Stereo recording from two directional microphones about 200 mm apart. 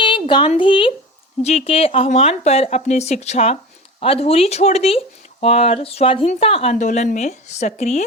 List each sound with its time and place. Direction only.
0.0 s a woman's voice: 25° left (ahead or behind)